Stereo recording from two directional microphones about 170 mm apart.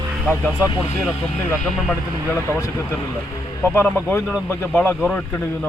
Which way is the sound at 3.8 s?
15° left (ahead or behind).